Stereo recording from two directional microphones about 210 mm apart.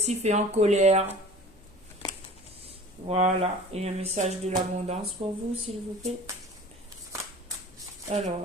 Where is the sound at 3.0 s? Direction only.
30° right (ahead or behind).